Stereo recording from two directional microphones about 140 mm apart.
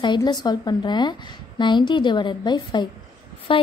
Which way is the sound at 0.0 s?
30° left (ahead or behind).